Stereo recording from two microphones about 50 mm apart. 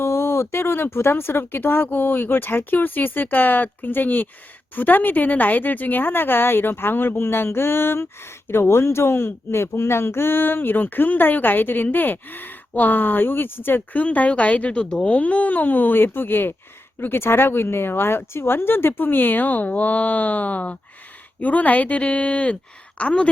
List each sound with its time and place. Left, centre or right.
0.0 s speech: left
13.9 s a woman's voice: left